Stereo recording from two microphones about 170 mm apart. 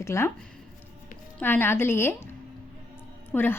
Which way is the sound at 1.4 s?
10° left (ahead or behind).